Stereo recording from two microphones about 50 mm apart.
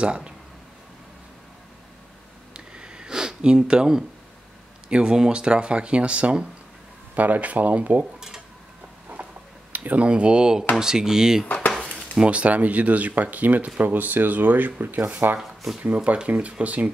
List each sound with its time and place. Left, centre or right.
0.0 s speech: centre
2.5 s sniff: centre
4.8 s speech: centre
9.2 s a sound: right
10.8 s speech: centre
12.2 s speech: right